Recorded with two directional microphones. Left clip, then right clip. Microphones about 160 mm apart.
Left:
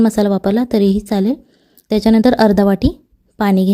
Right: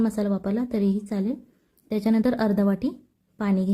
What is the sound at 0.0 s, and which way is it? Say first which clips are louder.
A woman's voice: left 12 dB; 55° left (ahead or behind).